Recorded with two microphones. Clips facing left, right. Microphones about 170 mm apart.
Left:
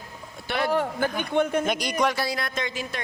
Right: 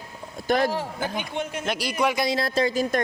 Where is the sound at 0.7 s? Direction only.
55° left (ahead or behind).